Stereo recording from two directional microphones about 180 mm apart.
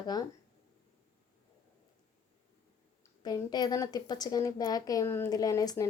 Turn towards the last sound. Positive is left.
turn(degrees=20)  # may be behind; listen again after turning